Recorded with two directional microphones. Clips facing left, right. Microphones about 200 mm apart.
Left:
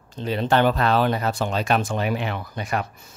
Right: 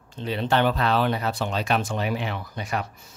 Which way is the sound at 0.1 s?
40° left (ahead or behind).